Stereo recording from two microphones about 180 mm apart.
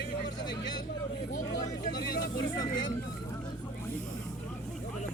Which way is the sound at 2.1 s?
60° left (ahead or behind).